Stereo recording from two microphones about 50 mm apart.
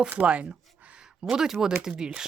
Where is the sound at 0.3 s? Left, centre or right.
Right.